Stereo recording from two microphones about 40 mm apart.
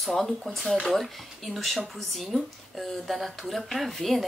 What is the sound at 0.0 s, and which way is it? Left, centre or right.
Speech, centre.